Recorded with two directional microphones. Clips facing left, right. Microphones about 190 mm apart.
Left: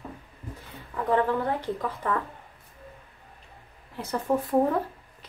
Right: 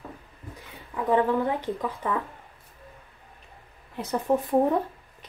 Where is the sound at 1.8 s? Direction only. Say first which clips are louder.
Even; 15° right (ahead or behind).